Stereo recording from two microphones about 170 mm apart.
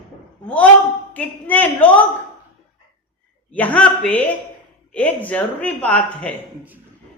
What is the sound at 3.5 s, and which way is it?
A woman's voice, 10° left (ahead or behind).